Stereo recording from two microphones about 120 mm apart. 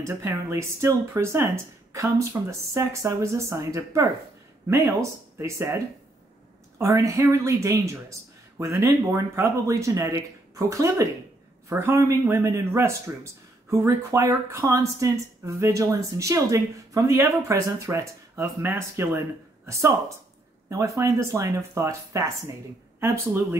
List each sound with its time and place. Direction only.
0.0 s speech: 20° right (ahead or behind)
6.8 s speech: 25° right (ahead or behind)